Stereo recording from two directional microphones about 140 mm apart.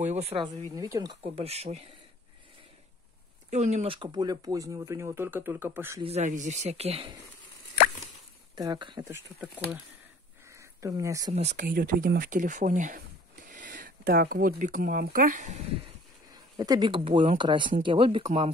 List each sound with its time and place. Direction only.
0.0 s speech: 50° right (ahead or behind)
0.7 s speech: 25° right (ahead or behind)
1.3 s speech: 45° right (ahead or behind)
3.4 s speech: 55° right (ahead or behind); by 5.9 s 15° right (ahead or behind)
6.0 s speech: 55° right (ahead or behind)
8.5 s speech: 30° right (ahead or behind)
9.4 s speech: 5° right (ahead or behind)
10.5 s speech: 20° right (ahead or behind)
11.3 s speech: 55° right (ahead or behind)
11.6 s speech: 85° right; by 15.6 s 60° right (ahead or behind)
16.5 s speech: 30° right (ahead or behind)